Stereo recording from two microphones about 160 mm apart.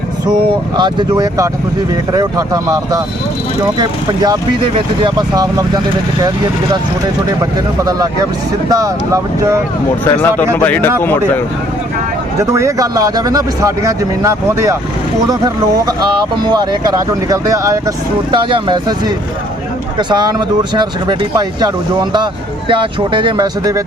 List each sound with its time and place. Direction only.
0.8 s speech: 25° right (ahead or behind)
8.7 s speech: 20° right (ahead or behind)
10.0 s speech: 10° left (ahead or behind)
12.4 s speech: 20° right (ahead or behind)
22.7 s speech: 30° right (ahead or behind)